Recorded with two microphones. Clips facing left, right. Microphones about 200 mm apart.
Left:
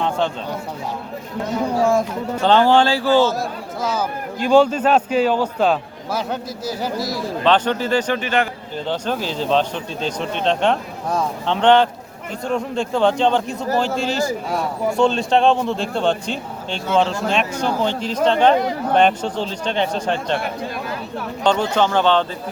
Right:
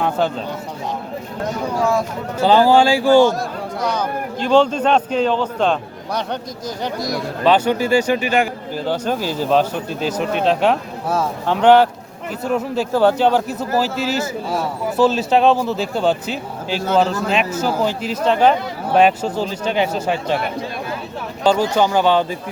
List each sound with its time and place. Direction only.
1.8 s speech: 50° left (ahead or behind)
2.4 s speech: 5° right (ahead or behind)
3.8 s a man's voice: 5° left (ahead or behind)
7.4 s a man's voice: 10° right (ahead or behind)
21.4 s speech: 5° right (ahead or behind)